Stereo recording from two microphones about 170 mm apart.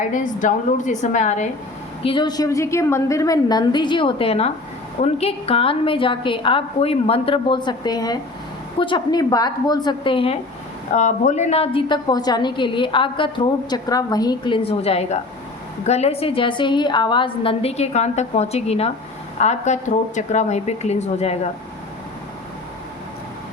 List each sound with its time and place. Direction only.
0.0 s a woman's voice: 50° left (ahead or behind)
2.0 s a woman's voice: 25° left (ahead or behind)
10.9 s a woman's voice: 45° left (ahead or behind)